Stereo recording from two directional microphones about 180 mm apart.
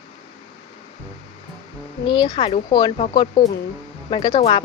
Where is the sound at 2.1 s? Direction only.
25° left (ahead or behind).